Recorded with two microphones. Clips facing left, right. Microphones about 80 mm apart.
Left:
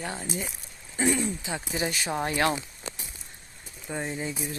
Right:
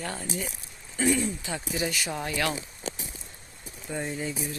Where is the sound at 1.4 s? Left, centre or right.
Left.